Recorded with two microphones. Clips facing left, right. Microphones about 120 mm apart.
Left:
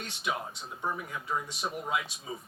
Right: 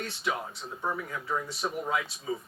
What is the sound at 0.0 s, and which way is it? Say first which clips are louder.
Speech: right 2 dB; 20° left (ahead or behind).